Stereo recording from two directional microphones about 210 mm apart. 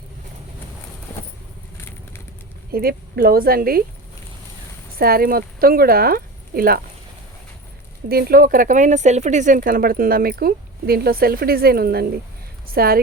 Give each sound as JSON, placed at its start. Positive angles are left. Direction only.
{"t": 2.7, "sound": "speech", "side_deg": -45}
{"t": 4.9, "sound": "speech", "side_deg": -45}
{"t": 8.1, "sound": "speech", "side_deg": -45}